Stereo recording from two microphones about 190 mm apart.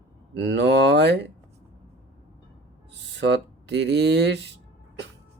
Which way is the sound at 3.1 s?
70° right (ahead or behind).